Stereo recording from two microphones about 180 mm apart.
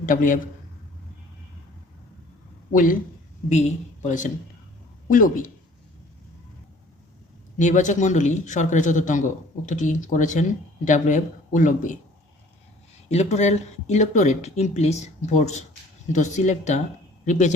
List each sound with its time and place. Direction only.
0.0 s speech: 50° left (ahead or behind)
2.7 s speech: 50° left (ahead or behind)
7.6 s speech: 45° left (ahead or behind)
13.1 s a man's voice: 40° left (ahead or behind)